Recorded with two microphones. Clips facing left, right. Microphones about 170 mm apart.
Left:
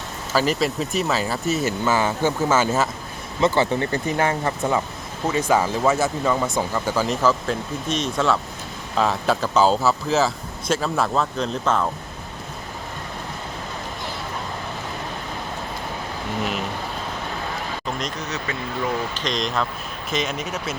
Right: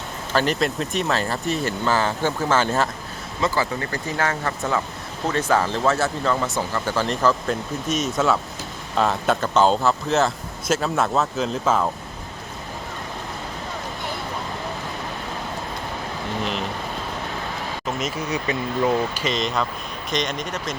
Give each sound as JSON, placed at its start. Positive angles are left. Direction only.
{"t": 0.3, "sound": "speech", "side_deg": 5}
{"t": 3.4, "sound": "speech", "side_deg": 25}
{"t": 17.8, "sound": "speech", "side_deg": -5}